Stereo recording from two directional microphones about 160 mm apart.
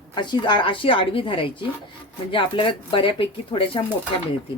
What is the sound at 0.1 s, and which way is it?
Speech, 30° left (ahead or behind).